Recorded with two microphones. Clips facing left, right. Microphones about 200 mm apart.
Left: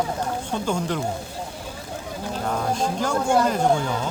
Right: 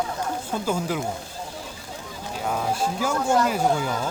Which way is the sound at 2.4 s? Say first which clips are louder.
Even; 5° right (ahead or behind).